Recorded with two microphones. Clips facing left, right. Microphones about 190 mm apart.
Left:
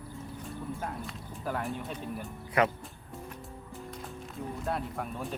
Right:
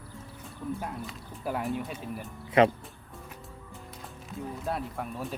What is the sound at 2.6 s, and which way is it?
Speech, 25° right (ahead or behind).